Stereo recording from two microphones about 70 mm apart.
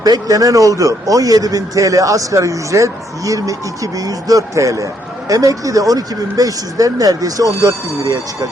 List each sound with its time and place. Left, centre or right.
0.0 s speech: right